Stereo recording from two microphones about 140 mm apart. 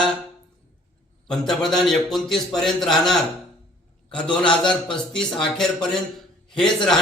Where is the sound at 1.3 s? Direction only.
5° left (ahead or behind).